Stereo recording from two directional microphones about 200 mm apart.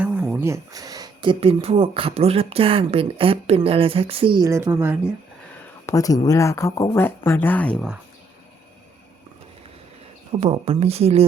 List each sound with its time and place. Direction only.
0.0 s speech: 5° right (ahead or behind)
5.8 s speech: 15° left (ahead or behind)
10.4 s speech: 30° right (ahead or behind)